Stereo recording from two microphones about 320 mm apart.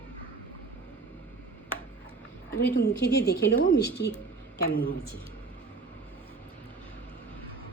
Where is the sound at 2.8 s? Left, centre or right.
Left.